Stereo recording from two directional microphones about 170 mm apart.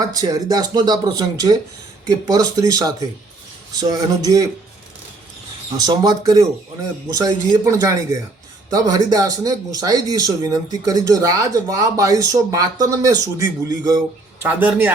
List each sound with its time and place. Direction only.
0.0 s speech: 20° right (ahead or behind)
5.7 s speech: 25° right (ahead or behind)
14.4 s a man's voice: 10° right (ahead or behind)